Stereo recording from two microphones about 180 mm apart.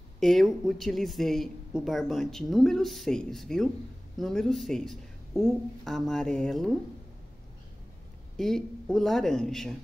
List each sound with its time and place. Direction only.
0.2 s speech: centre (ahead or behind)
8.4 s speech: centre (ahead or behind)